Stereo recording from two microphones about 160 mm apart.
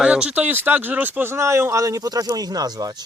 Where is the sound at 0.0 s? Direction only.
5° right (ahead or behind).